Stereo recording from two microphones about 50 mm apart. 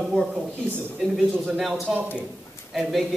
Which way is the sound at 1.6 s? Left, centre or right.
Centre.